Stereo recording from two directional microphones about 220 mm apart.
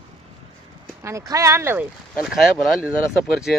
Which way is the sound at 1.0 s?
15° right (ahead or behind).